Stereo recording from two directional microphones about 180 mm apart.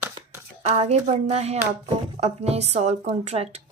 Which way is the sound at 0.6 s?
35° right (ahead or behind).